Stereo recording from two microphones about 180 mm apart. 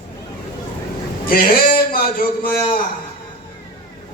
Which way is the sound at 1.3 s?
55° left (ahead or behind).